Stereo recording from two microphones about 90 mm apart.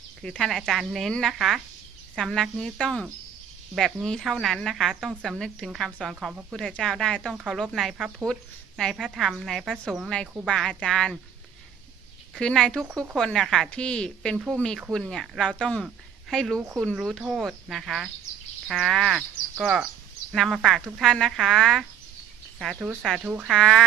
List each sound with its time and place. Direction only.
0.2 s speech: 5° left (ahead or behind)
7.3 s a woman's voice: 10° right (ahead or behind)
12.4 s a woman's voice: 10° left (ahead or behind)
14.3 s speech: 15° right (ahead or behind)
14.9 s speech: 5° left (ahead or behind)
23.5 s speech: 5° left (ahead or behind)